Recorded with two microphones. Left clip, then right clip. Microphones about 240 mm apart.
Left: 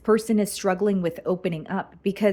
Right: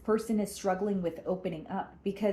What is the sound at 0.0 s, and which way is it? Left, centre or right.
Speech, left.